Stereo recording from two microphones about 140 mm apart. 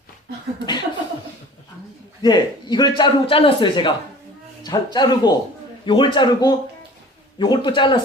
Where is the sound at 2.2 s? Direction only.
30° left (ahead or behind).